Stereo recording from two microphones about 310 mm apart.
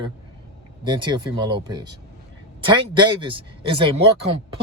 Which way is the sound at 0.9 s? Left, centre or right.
Centre.